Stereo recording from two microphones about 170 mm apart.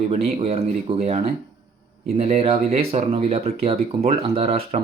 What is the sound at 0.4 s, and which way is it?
Speech, 40° right (ahead or behind).